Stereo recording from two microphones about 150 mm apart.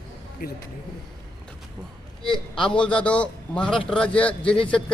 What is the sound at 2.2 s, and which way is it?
A man's voice, 5° left (ahead or behind).